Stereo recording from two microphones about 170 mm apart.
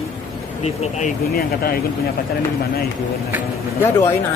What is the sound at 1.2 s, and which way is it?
Speech, 65° left (ahead or behind).